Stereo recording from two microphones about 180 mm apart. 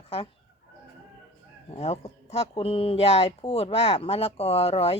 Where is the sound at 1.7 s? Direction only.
35° left (ahead or behind).